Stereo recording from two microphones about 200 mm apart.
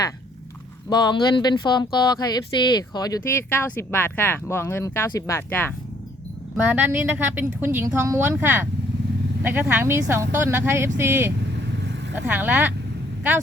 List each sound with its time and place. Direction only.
0.9 s speech: 20° left (ahead or behind)
6.7 s speech: 10° right (ahead or behind)